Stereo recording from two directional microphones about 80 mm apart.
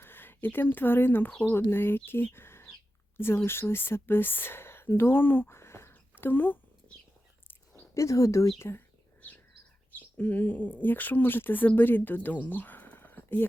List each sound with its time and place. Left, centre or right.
0.0 s speech: left
7.9 s speech: left
9.9 s speech: left